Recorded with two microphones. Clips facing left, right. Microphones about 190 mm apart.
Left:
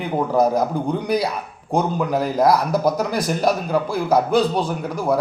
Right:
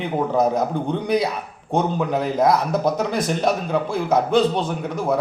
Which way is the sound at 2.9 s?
Centre (ahead or behind).